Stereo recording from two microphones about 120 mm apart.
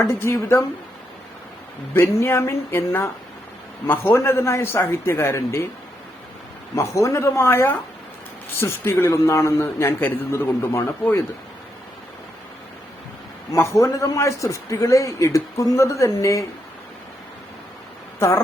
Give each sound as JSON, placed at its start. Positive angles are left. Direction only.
{"t": 0.0, "sound": "a man's voice", "side_deg": 20}
{"t": 1.9, "sound": "a man's voice", "side_deg": 20}
{"t": 6.7, "sound": "a man's voice", "side_deg": 25}
{"t": 13.5, "sound": "a man's voice", "side_deg": 25}